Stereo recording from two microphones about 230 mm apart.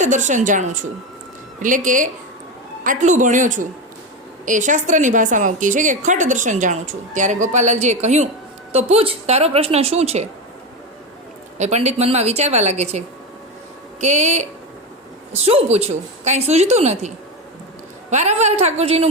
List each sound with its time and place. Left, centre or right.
0.0 s a woman's voice: right
11.5 s a woman's voice: right
18.1 s a woman's voice: right